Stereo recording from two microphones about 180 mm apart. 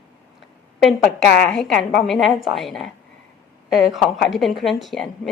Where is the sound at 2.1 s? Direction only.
Centre (ahead or behind).